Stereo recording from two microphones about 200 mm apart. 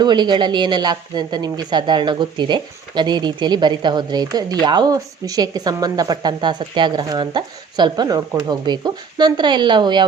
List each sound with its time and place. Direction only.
0.0 s speech: 20° right (ahead or behind)